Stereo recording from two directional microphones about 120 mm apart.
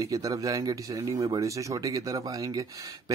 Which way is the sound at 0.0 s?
30° right (ahead or behind).